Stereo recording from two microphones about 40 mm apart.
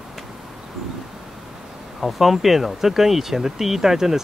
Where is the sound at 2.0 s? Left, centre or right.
Centre.